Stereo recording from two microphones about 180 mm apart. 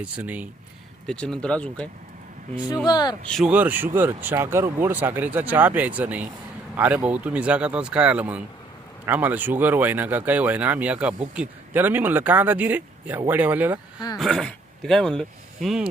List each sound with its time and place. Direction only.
0.0 s speech: 10° right (ahead or behind)
1.0 s speech: 5° left (ahead or behind)
2.8 s speech: 25° left (ahead or behind)
3.3 s speech: 5° right (ahead or behind)
14.2 s speech: centre (ahead or behind)